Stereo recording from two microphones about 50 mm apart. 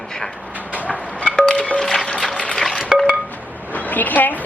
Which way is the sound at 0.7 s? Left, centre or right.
Left.